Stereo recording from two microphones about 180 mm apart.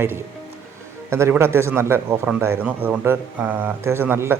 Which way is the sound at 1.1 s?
15° right (ahead or behind).